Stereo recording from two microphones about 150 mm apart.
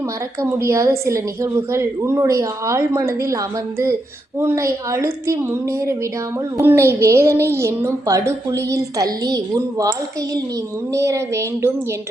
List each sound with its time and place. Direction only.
0.6 s a woman's voice: 20° right (ahead or behind)
10.9 s a woman's voice: 20° right (ahead or behind)